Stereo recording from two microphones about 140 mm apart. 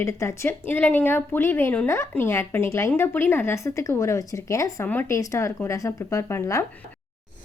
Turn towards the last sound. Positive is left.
turn(degrees=20)  # may be behind; listen again after turning